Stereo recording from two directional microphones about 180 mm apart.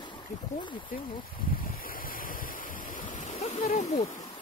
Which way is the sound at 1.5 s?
55° left (ahead or behind).